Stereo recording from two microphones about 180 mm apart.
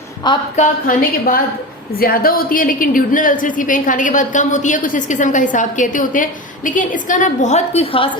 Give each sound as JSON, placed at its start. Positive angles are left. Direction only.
{"t": 0.5, "sound": "a woman's voice", "side_deg": 45}